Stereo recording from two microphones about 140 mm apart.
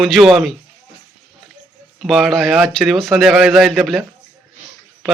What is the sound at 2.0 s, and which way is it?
A man's voice, centre (ahead or behind).